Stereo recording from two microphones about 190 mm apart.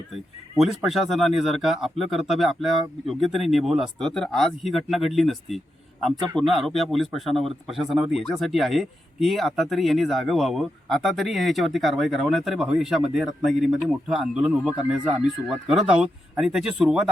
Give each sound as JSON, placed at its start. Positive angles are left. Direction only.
{"t": 0.6, "sound": "speech", "side_deg": 0}
{"t": 6.2, "sound": "a man's voice", "side_deg": -25}
{"t": 6.5, "sound": "speech", "side_deg": 0}